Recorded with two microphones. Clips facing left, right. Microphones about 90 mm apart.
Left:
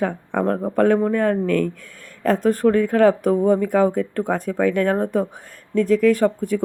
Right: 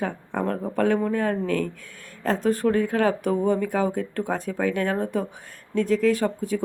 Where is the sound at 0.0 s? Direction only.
55° left (ahead or behind).